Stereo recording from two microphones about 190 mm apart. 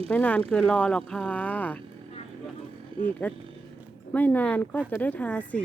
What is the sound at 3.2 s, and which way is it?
Speech, 10° left (ahead or behind).